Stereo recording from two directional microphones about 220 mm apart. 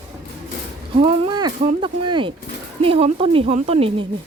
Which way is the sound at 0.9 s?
25° right (ahead or behind).